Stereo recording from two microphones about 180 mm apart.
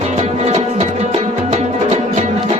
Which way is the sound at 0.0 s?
40° right (ahead or behind).